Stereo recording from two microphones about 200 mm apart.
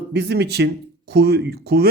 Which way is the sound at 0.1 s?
55° right (ahead or behind).